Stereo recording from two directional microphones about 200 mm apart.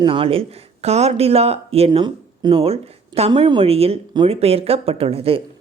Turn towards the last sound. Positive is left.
turn(degrees=-30)  # may be behind; listen again after turning